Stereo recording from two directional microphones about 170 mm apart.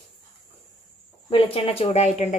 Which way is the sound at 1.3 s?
35° left (ahead or behind).